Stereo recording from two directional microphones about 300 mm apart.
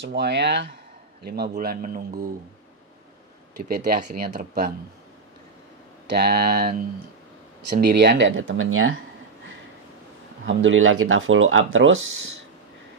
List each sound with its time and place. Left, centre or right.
0.0 s speech: right
3.5 s speech: right
6.0 s speech: right
7.7 s speech: right
10.4 s speech: right